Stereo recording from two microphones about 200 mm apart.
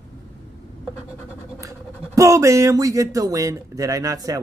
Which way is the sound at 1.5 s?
15° right (ahead or behind).